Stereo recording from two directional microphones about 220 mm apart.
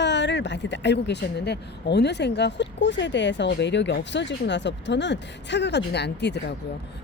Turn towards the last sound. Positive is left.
turn(degrees=50)  # may be behind; listen again after turning